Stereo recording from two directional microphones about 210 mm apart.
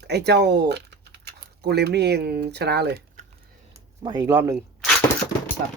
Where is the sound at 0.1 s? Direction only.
50° right (ahead or behind).